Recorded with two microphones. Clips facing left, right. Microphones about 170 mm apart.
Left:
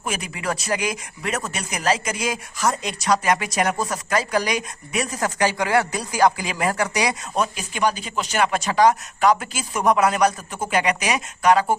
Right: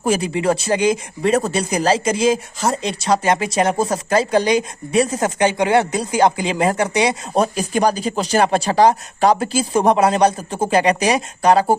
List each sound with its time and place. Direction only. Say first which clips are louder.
0.0 s speech: right 10 dB; 30° right (ahead or behind)
7.4 s speech: right 5 dB; 40° right (ahead or behind)